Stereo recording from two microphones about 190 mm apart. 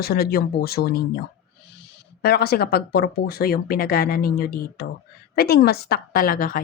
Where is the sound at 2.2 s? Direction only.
55° left (ahead or behind).